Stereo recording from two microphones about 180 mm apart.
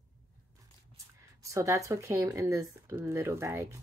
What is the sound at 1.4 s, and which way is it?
Speech, 15° right (ahead or behind).